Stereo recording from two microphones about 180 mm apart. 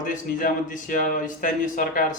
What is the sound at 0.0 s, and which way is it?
Speech, 45° left (ahead or behind).